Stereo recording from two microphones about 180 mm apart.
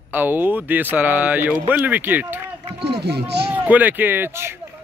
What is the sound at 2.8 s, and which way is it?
Speech, 65° right (ahead or behind).